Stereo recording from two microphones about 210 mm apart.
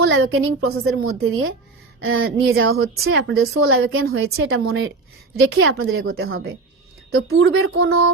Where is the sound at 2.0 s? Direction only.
75° right (ahead or behind).